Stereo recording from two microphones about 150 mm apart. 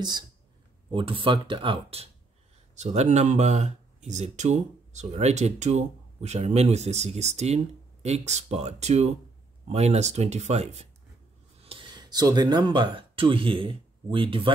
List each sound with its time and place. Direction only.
0.9 s speech: 35° right (ahead or behind)
2.7 s speech: 50° right (ahead or behind)
11.6 s speech: 35° right (ahead or behind)